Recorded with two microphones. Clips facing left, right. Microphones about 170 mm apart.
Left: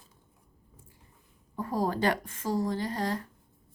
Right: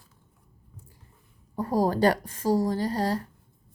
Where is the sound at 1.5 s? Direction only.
35° right (ahead or behind).